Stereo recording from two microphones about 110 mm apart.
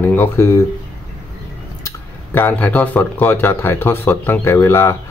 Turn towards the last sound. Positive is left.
turn(degrees=25)  # may be behind; listen again after turning